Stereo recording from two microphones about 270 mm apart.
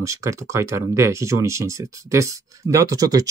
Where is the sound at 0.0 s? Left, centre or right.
Centre.